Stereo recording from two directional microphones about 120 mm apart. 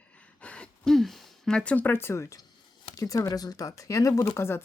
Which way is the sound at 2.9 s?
30° left (ahead or behind).